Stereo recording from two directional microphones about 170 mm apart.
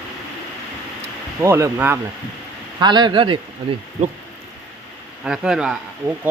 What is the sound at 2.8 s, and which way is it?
Speech, 25° right (ahead or behind).